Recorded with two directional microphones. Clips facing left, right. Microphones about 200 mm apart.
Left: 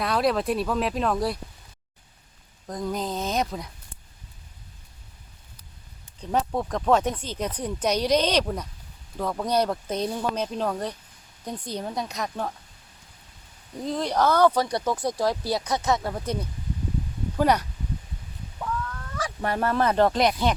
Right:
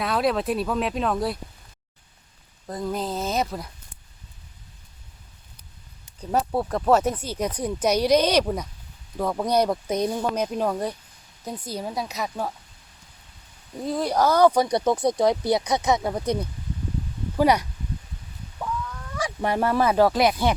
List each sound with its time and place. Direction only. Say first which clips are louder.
0.0 s speech: even; centre (ahead or behind)
2.6 s speech: right 1 dB; 5° right (ahead or behind)
6.1 s speech: right 2 dB; 5° right (ahead or behind)
13.8 s speech: right 1 dB; 10° right (ahead or behind)
19.1 s speech: right 3 dB; 15° right (ahead or behind)